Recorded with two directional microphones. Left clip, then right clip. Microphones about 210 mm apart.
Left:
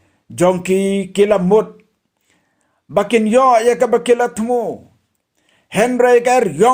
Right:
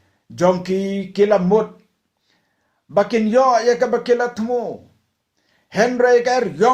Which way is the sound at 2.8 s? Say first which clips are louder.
Left 3 dB; 35° left (ahead or behind).